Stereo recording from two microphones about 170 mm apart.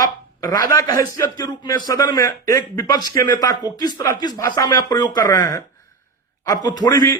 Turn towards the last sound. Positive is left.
turn(degrees=20)  # may be behind; listen again after turning